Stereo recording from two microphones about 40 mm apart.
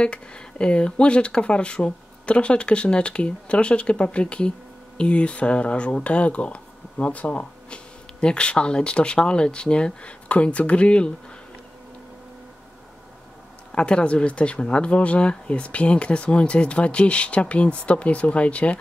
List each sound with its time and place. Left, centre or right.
0.0 s speech: left
13.7 s speech: left